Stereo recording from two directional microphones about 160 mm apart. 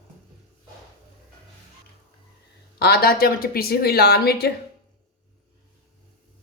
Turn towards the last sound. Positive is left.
turn(degrees=85)